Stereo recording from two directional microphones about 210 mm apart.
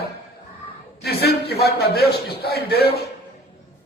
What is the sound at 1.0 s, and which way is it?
A man's voice, 50° left (ahead or behind).